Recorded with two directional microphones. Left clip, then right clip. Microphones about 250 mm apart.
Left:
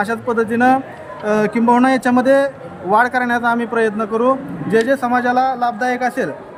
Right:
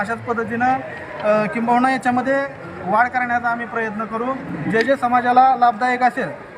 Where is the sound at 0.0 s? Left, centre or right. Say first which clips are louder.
Left 4 dB; left.